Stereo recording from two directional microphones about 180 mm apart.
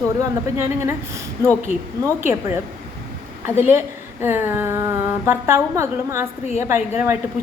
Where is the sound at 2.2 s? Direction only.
10° right (ahead or behind).